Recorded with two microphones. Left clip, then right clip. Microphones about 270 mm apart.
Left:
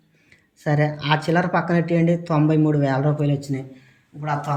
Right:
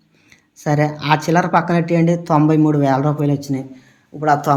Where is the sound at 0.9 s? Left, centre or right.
Centre.